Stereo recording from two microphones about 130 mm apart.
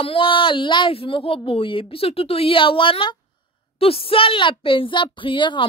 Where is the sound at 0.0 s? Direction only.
45° left (ahead or behind).